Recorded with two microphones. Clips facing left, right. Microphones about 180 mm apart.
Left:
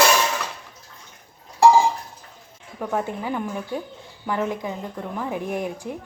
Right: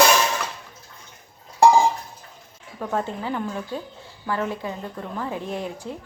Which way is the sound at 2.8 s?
10° left (ahead or behind).